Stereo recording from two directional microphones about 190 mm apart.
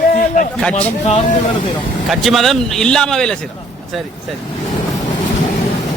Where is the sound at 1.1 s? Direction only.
35° left (ahead or behind).